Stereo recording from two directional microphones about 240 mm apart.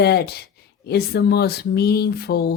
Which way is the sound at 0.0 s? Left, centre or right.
Left.